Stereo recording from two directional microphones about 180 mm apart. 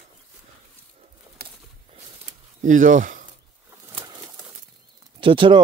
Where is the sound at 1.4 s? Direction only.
60° right (ahead or behind).